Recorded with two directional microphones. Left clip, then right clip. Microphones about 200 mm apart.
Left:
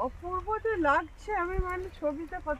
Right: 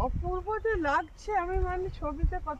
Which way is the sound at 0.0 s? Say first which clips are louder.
Even; 20° right (ahead or behind).